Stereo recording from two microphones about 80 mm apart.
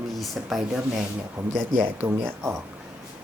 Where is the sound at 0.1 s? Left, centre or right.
Centre.